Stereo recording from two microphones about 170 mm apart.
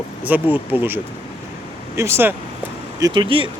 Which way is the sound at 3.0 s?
25° right (ahead or behind).